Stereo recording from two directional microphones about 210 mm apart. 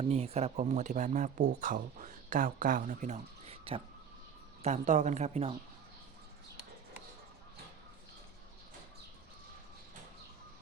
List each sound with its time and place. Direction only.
0.0 s speech: 30° right (ahead or behind)